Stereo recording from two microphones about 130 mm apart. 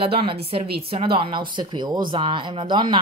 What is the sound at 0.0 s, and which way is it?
Speech, 45° right (ahead or behind).